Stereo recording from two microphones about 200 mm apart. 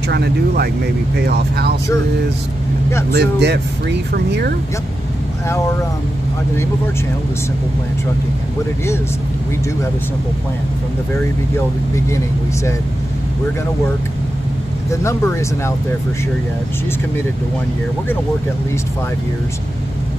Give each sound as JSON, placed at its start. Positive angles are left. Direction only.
{"t": 0.1, "sound": "speech", "side_deg": -55}
{"t": 3.1, "sound": "speech", "side_deg": -55}
{"t": 14.9, "sound": "speech", "side_deg": 15}